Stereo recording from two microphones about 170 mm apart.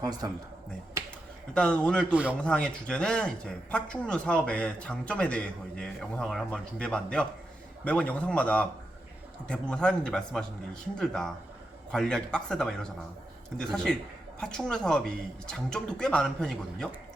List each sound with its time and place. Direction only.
0.0 s a man's voice: 20° right (ahead or behind)
1.5 s speech: 5° left (ahead or behind)